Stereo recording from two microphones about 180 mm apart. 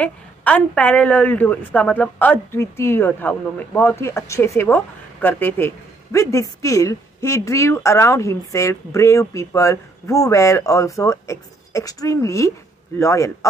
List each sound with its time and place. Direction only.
0.0 s a woman's voice: 10° left (ahead or behind)